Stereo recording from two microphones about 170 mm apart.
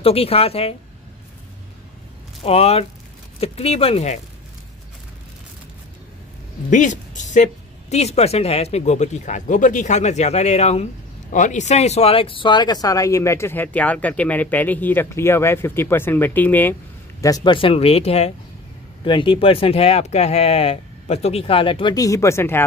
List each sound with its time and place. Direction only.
0.0 s speech: 35° left (ahead or behind)
2.4 s speech: 35° left (ahead or behind)
6.7 s speech: 45° left (ahead or behind); by 16.7 s 10° left (ahead or behind)
17.2 s speech: 20° left (ahead or behind)